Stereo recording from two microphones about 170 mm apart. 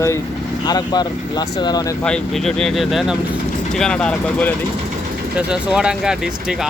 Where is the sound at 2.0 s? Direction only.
5° left (ahead or behind).